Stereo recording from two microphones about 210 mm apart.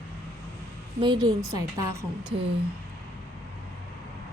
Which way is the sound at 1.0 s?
20° right (ahead or behind).